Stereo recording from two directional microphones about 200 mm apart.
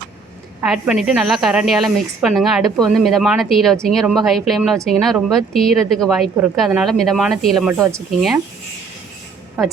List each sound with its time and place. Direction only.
0.6 s a woman's voice: 5° right (ahead or behind)
7.9 s a woman's voice: centre (ahead or behind)